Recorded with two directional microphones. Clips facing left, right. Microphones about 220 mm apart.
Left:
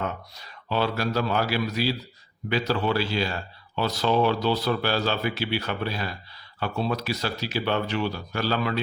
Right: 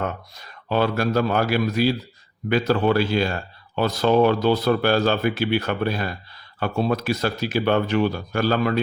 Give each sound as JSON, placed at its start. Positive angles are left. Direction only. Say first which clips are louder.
{"t": 0.3, "sound": "speech", "louder": "right 5 dB", "side_deg": -50}